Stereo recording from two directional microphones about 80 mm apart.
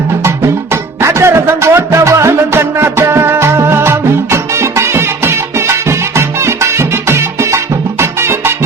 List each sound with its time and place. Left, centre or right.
0.3 s music: right